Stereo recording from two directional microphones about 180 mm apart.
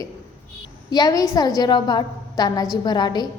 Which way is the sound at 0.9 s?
20° left (ahead or behind).